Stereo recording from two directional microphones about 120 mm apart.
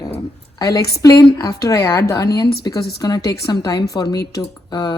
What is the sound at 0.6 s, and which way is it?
A woman's voice, 30° left (ahead or behind).